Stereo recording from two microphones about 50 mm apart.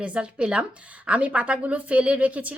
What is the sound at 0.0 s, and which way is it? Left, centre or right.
A woman's voice, right.